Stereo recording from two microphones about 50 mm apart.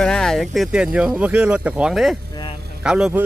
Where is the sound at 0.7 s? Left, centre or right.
Centre.